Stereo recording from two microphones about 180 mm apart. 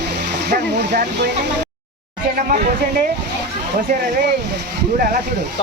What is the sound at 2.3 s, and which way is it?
Speech, 55° right (ahead or behind).